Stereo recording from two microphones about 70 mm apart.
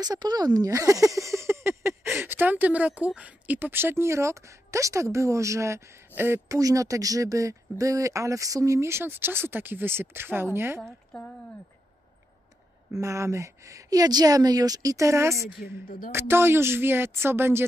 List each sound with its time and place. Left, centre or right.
0.0 s speech: right
0.7 s speech: right
6.5 s speech: right
11.1 s speech: centre
13.0 s speech: right